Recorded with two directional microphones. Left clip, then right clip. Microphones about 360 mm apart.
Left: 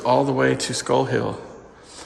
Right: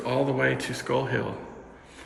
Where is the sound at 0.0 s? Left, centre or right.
Centre.